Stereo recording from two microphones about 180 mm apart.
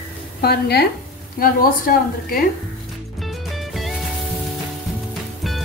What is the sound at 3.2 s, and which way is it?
Music, centre (ahead or behind).